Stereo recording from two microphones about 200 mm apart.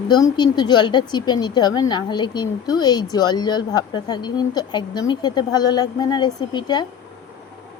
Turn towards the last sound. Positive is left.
turn(degrees=20)  # may be behind; listen again after turning